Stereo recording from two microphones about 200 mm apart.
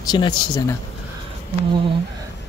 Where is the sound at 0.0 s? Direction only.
20° left (ahead or behind).